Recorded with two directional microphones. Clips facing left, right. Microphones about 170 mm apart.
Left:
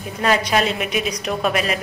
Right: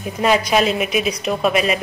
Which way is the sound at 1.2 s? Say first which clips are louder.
Right 3 dB; centre (ahead or behind).